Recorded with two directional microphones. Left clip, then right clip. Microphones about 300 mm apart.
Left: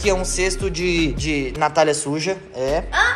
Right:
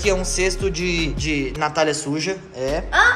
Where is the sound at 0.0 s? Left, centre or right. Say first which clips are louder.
Even; centre.